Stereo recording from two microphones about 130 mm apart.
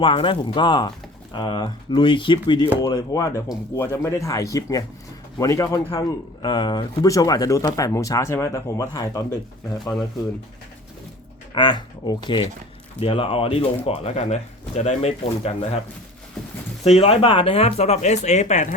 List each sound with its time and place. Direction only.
0.0 s speech: 40° left (ahead or behind)
2.8 s speech: 30° left (ahead or behind)
11.5 s speech: 35° left (ahead or behind); by 15.8 s 55° left (ahead or behind)
16.8 s speech: 55° left (ahead or behind)